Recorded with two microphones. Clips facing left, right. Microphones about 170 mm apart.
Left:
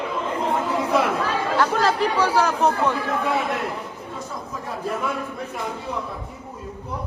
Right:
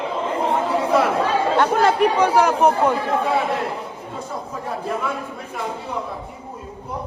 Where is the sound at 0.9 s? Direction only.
30° right (ahead or behind).